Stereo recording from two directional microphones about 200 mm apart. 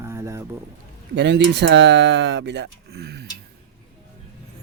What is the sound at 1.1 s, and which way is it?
Speech, 60° right (ahead or behind).